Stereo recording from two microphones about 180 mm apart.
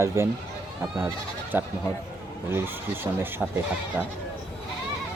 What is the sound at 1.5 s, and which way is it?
Speech, 10° right (ahead or behind).